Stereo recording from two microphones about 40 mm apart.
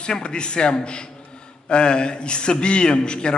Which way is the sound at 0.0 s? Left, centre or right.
Left.